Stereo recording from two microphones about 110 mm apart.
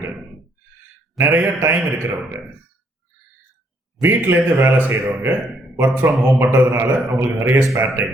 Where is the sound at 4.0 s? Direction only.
20° right (ahead or behind).